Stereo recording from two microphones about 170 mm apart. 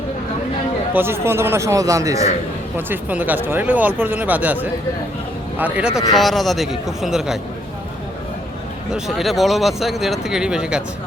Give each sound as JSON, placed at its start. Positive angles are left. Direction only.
{"t": 0.9, "sound": "speech", "side_deg": -15}
{"t": 8.9, "sound": "speech", "side_deg": 0}